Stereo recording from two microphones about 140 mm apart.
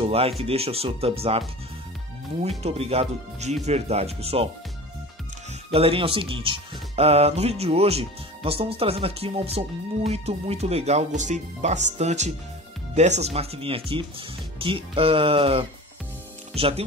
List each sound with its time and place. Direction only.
0.0 s speech: 45° right (ahead or behind)
2.6 s speech: 45° right (ahead or behind)
5.5 s speech: 45° right (ahead or behind)
11.1 s speech: 60° right (ahead or behind); by 16.8 s 45° right (ahead or behind)